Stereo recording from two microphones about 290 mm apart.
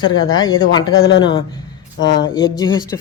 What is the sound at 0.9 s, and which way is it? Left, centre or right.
Speech, left.